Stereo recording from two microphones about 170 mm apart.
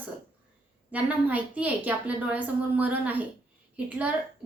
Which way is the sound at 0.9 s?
10° right (ahead or behind).